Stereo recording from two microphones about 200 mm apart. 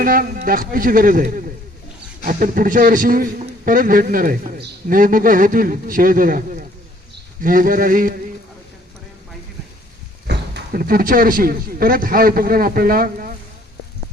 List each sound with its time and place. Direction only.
0.0 s speech: 45° right (ahead or behind)
10.2 s speech: 50° right (ahead or behind)